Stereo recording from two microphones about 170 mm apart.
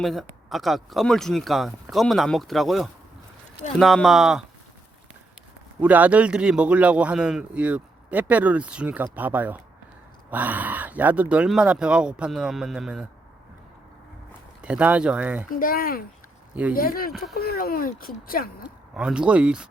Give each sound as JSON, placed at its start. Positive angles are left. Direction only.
{"t": 0.0, "sound": "speech", "side_deg": 0}
{"t": 5.8, "sound": "a man's voice", "side_deg": -10}
{"t": 14.6, "sound": "a man's voice", "side_deg": -10}
{"t": 15.5, "sound": "speech", "side_deg": 60}
{"t": 18.6, "sound": "speech", "side_deg": -5}